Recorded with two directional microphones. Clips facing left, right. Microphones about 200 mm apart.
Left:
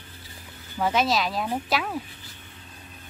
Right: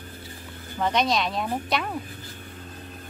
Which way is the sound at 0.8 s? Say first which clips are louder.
Even; 5° left (ahead or behind).